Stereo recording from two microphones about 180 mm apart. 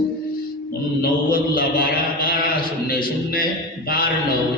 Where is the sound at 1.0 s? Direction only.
55° left (ahead or behind).